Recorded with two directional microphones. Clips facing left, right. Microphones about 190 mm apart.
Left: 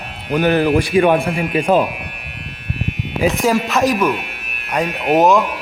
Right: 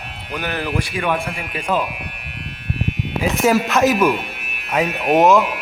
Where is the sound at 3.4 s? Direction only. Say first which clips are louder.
Right 4 dB; centre (ahead or behind).